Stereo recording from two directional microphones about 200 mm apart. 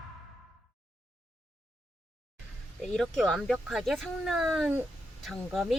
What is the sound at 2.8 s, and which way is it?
Speech, centre (ahead or behind).